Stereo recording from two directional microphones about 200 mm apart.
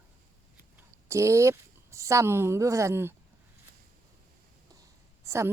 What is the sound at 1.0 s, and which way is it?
Speech, 15° right (ahead or behind).